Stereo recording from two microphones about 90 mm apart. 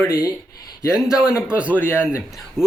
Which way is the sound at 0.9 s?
5° right (ahead or behind).